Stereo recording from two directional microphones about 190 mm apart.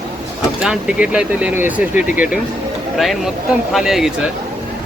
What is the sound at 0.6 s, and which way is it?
A man's voice, 5° right (ahead or behind).